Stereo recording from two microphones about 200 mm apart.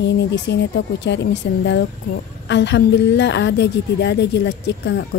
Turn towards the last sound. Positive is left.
turn(degrees=60)  # may be behind; listen again after turning